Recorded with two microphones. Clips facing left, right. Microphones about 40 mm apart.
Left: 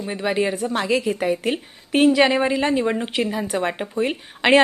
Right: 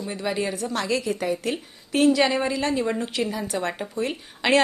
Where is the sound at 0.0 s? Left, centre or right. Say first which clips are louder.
Left 5 dB; left.